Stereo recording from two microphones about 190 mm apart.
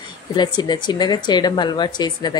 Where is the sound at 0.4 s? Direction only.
20° left (ahead or behind).